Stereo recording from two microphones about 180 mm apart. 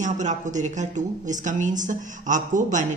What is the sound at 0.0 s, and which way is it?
A woman's voice, 40° right (ahead or behind).